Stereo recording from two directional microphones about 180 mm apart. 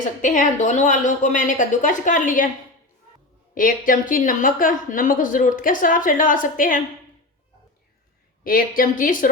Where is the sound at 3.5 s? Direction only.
50° left (ahead or behind).